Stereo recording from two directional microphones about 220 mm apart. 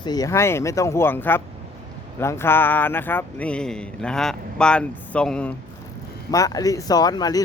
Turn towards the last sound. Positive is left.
turn(degrees=15)  # may be behind; listen again after turning